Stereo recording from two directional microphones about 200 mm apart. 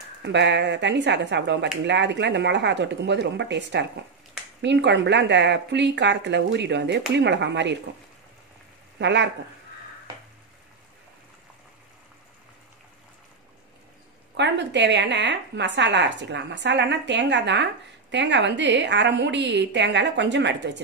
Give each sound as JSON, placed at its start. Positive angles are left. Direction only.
{"t": 0.2, "sound": "a woman's voice", "side_deg": -60}
{"t": 8.9, "sound": "speech", "side_deg": -60}
{"t": 14.3, "sound": "a woman's voice", "side_deg": -60}